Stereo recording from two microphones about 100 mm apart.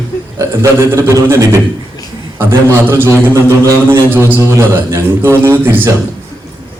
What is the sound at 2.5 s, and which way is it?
A man's voice, 25° right (ahead or behind).